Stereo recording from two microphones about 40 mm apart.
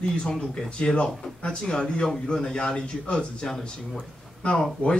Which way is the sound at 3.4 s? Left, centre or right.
Centre.